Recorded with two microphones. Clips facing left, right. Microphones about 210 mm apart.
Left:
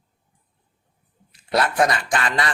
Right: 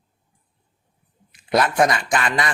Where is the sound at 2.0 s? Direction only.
25° right (ahead or behind).